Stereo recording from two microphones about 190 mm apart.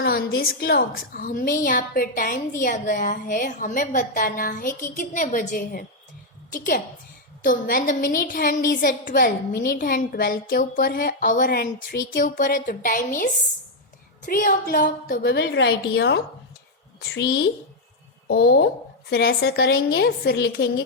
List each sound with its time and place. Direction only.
0.0 s a woman's voice: 55° left (ahead or behind)
18.3 s a woman's voice: 55° left (ahead or behind)